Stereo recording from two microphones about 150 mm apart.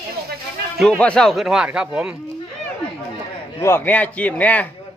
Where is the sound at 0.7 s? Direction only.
Centre (ahead or behind).